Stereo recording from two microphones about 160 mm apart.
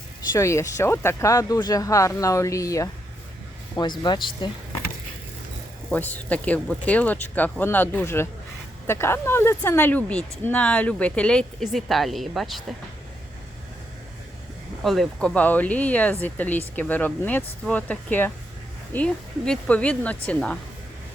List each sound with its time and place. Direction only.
0.3 s speech: 20° left (ahead or behind)
5.9 s speech: 10° left (ahead or behind)
14.8 s speech: centre (ahead or behind)